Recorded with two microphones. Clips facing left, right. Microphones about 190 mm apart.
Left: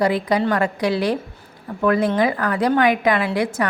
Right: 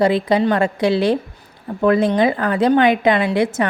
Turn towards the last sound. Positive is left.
turn(degrees=-25)  # may be behind; listen again after turning